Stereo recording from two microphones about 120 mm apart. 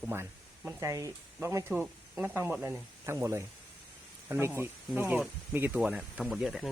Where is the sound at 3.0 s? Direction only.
25° right (ahead or behind); by 6.7 s centre (ahead or behind).